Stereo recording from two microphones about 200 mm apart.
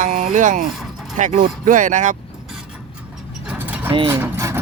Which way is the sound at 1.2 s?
40° right (ahead or behind).